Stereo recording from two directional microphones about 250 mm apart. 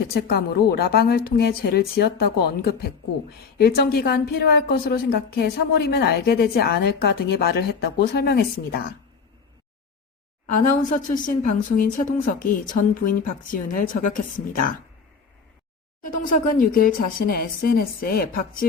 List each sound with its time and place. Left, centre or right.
0.1 s a woman's voice: left
10.5 s a woman's voice: left
16.0 s a woman's voice: left